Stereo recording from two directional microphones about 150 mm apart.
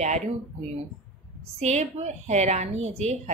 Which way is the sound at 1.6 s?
45° right (ahead or behind).